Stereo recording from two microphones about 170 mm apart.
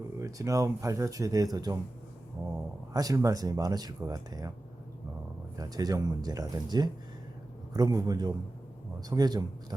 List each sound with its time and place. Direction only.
0.2 s speech: 20° right (ahead or behind)
2.9 s speech: 20° right (ahead or behind)
5.5 s speech: 20° right (ahead or behind)